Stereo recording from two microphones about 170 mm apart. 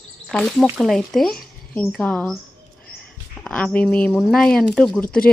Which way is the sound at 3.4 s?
5° left (ahead or behind).